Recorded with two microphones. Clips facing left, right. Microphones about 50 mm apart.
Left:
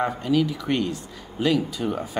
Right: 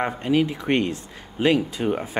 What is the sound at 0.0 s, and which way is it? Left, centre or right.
Speech, right.